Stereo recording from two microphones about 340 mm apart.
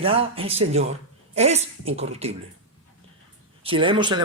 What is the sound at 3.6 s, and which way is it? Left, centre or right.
Speech, centre.